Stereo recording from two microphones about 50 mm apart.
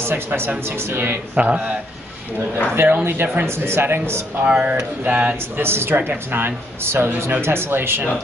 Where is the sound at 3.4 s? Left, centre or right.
Right.